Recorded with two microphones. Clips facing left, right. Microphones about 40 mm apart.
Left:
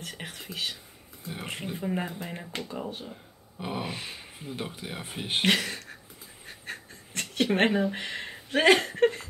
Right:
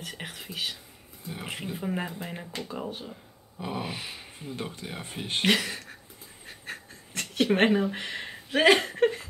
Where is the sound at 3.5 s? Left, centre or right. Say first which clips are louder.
Even; centre.